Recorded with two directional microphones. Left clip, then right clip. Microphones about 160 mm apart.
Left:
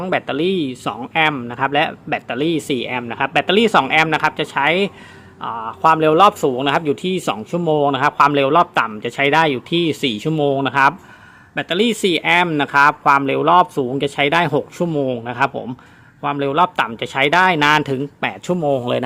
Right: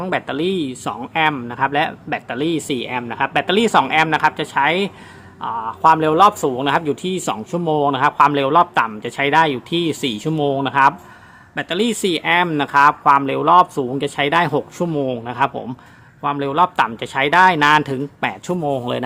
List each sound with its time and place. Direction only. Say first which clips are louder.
0.0 s speech: left 2 dB; 15° left (ahead or behind)